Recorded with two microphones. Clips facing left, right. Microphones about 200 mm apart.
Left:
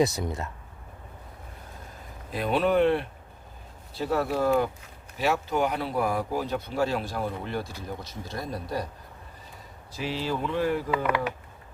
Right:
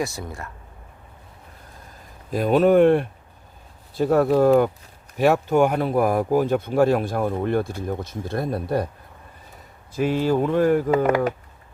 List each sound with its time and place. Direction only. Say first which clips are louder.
0.0 s speech: left 3 dB; 20° left (ahead or behind)
2.3 s speech: right 7 dB; 45° right (ahead or behind)
9.9 s speech: right 10 dB; 50° right (ahead or behind)